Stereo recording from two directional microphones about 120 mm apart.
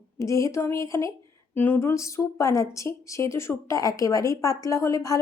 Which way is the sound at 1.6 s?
15° left (ahead or behind).